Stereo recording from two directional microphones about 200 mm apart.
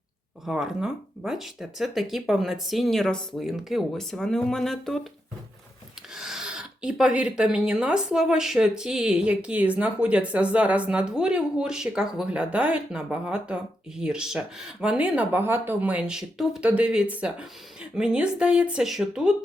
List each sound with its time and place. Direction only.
0.4 s speech: centre (ahead or behind)
6.1 s speech: 5° right (ahead or behind)